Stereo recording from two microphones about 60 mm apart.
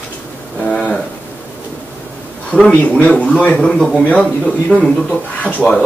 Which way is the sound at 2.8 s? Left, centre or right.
Left.